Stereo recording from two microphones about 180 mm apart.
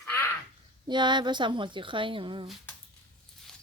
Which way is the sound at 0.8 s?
25° right (ahead or behind).